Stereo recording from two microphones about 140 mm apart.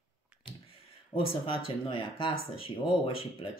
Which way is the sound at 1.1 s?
40° left (ahead or behind).